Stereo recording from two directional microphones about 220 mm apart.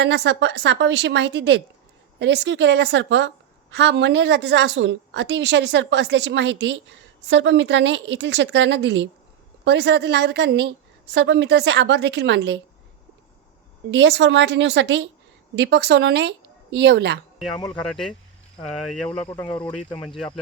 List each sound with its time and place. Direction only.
0.0 s a woman's voice: 50° right (ahead or behind)
13.9 s a woman's voice: 55° right (ahead or behind)
18.9 s speech: 5° left (ahead or behind)